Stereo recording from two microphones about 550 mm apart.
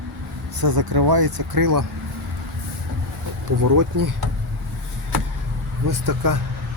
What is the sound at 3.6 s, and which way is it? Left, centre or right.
Speech, right.